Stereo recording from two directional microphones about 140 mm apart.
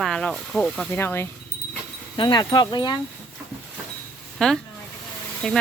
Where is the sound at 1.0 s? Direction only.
15° left (ahead or behind).